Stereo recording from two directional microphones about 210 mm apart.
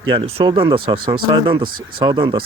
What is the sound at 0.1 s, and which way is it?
Speech, 25° right (ahead or behind).